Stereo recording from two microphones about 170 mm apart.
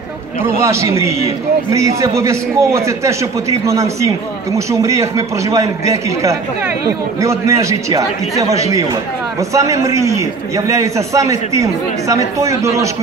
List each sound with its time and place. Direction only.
0.6 s a man's voice: 15° right (ahead or behind)